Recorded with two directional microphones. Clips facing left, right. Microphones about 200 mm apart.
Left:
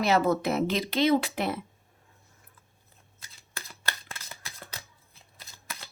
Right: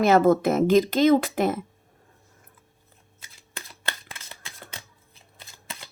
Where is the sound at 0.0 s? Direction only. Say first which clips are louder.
Right 6 dB; 50° right (ahead or behind).